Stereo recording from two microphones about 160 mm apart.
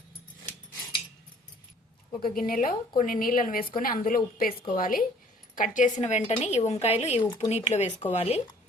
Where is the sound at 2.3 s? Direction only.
60° left (ahead or behind); by 8.4 s 40° left (ahead or behind).